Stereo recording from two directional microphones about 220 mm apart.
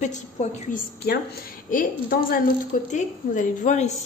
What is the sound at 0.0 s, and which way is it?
A woman's voice, 30° left (ahead or behind).